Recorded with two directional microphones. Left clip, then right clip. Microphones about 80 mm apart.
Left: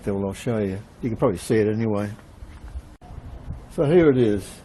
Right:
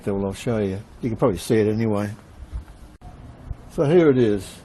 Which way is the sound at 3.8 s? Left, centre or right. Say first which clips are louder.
Right 1 dB; centre.